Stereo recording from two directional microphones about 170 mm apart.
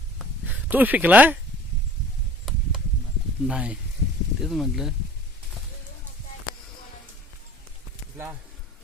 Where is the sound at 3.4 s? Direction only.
5° right (ahead or behind).